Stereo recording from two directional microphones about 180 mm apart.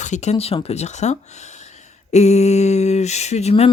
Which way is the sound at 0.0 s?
40° left (ahead or behind).